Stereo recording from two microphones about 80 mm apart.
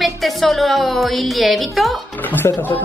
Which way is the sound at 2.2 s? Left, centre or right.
Left.